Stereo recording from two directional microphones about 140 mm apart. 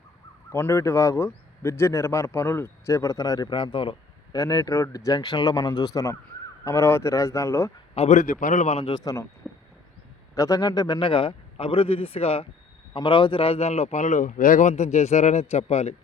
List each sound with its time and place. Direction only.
0.5 s speech: 20° left (ahead or behind); by 4.4 s 35° left (ahead or behind)
4.4 s speech: 25° left (ahead or behind)
7.9 s a man's voice: 50° left (ahead or behind)
8.2 s a man's voice: 75° left (ahead or behind); by 8.9 s 55° left (ahead or behind)
8.9 s speech: 25° left (ahead or behind)
9.5 s a sound: 5° left (ahead or behind)
10.3 s a man's voice: 25° left (ahead or behind); by 16.0 s 50° left (ahead or behind)